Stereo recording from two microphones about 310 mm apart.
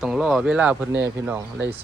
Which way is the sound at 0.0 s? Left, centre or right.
Centre.